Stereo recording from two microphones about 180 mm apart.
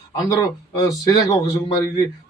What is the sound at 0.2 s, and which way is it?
A man's voice, 20° left (ahead or behind).